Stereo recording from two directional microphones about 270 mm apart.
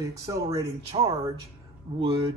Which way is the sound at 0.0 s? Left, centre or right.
Centre.